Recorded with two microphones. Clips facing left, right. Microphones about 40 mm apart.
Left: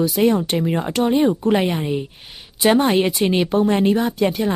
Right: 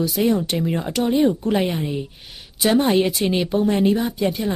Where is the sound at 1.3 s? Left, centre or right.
Left.